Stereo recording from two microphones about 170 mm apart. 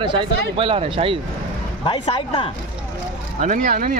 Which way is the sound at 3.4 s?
55° right (ahead or behind).